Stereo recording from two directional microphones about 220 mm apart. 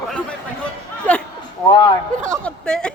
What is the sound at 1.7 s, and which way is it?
Speech, 20° left (ahead or behind).